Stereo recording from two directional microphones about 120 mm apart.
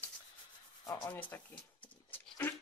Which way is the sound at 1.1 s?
15° left (ahead or behind).